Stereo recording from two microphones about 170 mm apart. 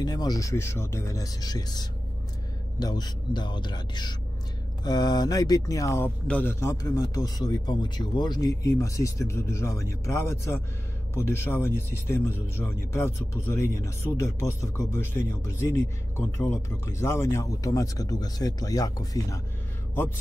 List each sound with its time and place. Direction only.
0.0 s speech: 25° left (ahead or behind)